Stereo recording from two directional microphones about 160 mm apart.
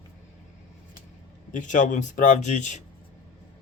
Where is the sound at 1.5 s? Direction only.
50° left (ahead or behind).